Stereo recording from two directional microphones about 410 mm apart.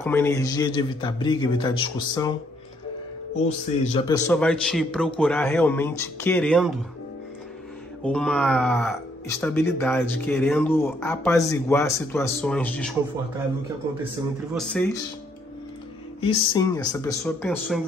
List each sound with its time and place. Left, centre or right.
0.0 s a man's voice: centre
3.4 s a man's voice: centre
4.3 s speech: centre
8.0 s speech: centre
14.5 s speech: centre
16.2 s a man's voice: centre